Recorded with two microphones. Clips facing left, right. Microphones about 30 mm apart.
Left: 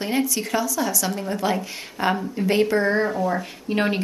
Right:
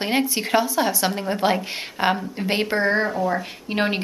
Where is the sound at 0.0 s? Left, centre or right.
Right.